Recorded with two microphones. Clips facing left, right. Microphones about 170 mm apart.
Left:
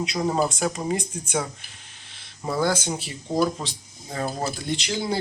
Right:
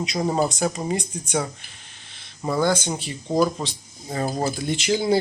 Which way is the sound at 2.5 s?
5° left (ahead or behind).